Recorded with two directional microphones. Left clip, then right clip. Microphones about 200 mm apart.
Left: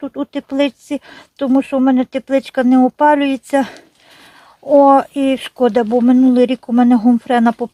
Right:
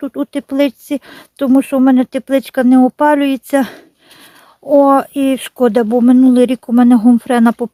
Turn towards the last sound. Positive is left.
turn(degrees=-25)  # may be behind; listen again after turning